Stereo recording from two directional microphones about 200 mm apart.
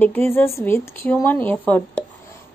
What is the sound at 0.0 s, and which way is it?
A woman's voice, 10° left (ahead or behind).